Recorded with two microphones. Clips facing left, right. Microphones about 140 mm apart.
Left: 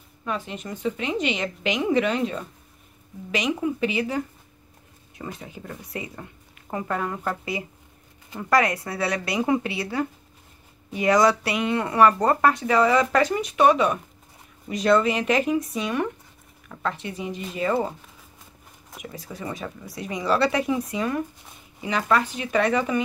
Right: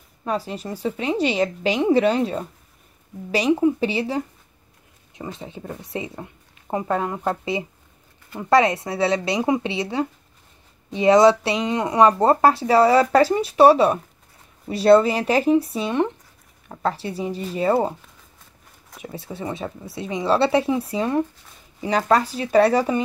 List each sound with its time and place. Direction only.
0.2 s a woman's voice: 35° right (ahead or behind)
19.0 s a woman's voice: 30° right (ahead or behind)